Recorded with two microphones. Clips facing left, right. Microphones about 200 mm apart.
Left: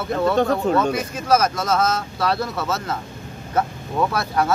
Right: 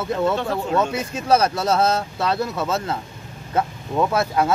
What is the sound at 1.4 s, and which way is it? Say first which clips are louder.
Speech: right 1 dB; 35° right (ahead or behind).